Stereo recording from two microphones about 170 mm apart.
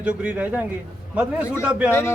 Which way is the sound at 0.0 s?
5° right (ahead or behind).